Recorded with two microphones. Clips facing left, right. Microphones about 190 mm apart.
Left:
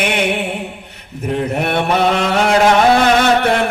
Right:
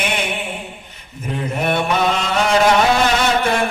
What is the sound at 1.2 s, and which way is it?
A man's voice, 65° left (ahead or behind).